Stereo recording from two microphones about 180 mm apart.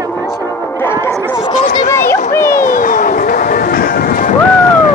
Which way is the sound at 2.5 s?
50° left (ahead or behind).